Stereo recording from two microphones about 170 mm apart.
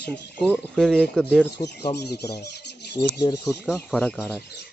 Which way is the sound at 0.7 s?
5° left (ahead or behind).